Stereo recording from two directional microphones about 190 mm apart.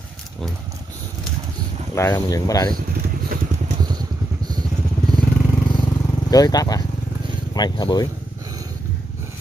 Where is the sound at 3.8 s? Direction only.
20° right (ahead or behind).